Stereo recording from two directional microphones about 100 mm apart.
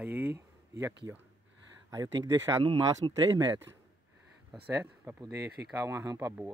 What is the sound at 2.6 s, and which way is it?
Speech, 55° right (ahead or behind).